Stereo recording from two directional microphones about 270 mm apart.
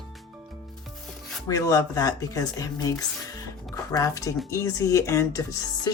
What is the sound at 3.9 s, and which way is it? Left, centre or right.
Speech, centre.